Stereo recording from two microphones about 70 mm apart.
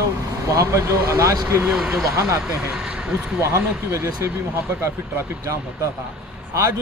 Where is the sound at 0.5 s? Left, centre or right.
Right.